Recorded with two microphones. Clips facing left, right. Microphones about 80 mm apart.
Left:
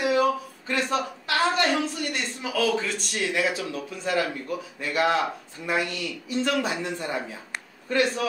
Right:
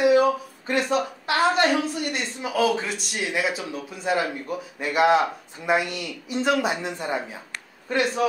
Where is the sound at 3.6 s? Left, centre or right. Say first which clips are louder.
Right 2 dB; centre.